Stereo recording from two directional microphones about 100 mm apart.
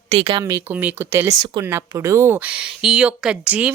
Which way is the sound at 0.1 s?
75° right (ahead or behind).